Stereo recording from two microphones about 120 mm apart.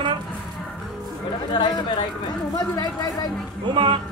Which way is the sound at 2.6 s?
35° left (ahead or behind).